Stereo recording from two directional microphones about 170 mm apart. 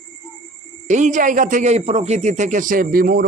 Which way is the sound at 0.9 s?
45° right (ahead or behind).